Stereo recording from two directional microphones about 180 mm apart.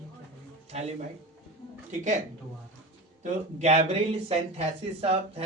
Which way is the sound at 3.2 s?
40° right (ahead or behind).